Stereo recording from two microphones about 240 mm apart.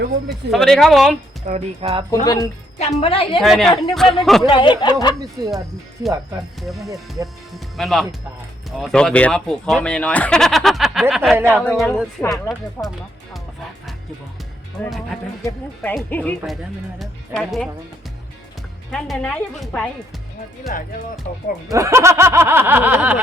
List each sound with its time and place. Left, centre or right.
0.5 s speech: centre
1.5 s speech: right
2.2 s speech: centre
3.4 s speech: centre
4.4 s speech: left
5.4 s speech: centre
6.6 s speech: centre
11.6 s speech: centre
14.8 s speech: centre
18.9 s speech: centre
21.7 s speech: centre